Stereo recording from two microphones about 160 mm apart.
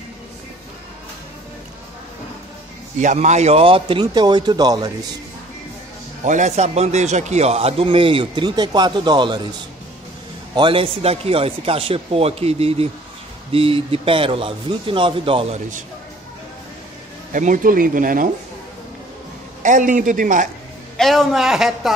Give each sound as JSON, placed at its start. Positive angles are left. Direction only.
{"t": 3.0, "sound": "speech", "side_deg": -50}
{"t": 6.2, "sound": "a man's voice", "side_deg": -50}
{"t": 10.5, "sound": "a man's voice", "side_deg": -30}
{"t": 17.3, "sound": "speech", "side_deg": -55}
{"t": 19.6, "sound": "a man's voice", "side_deg": -55}
{"t": 21.0, "sound": "a man's voice", "side_deg": 0}